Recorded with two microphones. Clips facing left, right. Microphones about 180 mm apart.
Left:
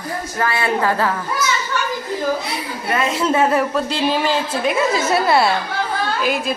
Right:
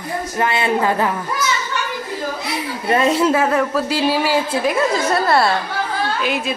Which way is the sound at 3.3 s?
Centre (ahead or behind).